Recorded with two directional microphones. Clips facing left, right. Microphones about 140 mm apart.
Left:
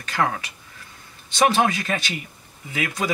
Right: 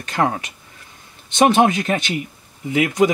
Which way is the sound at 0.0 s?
25° right (ahead or behind).